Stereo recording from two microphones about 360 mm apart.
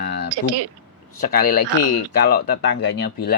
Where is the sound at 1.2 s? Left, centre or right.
Left.